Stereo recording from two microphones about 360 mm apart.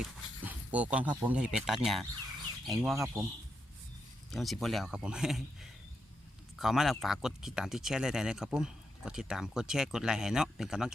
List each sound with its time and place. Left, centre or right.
0.0 s speech: centre
4.3 s speech: centre